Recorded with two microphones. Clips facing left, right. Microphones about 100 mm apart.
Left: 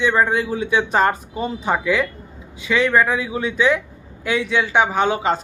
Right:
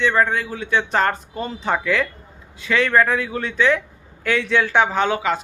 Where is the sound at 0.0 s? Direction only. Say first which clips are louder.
Left 1 dB; 15° left (ahead or behind).